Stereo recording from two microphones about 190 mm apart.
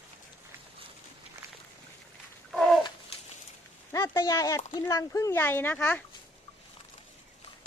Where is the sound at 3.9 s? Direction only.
15° left (ahead or behind).